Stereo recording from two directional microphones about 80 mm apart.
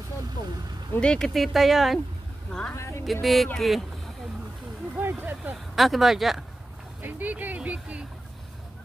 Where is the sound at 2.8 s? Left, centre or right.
Left.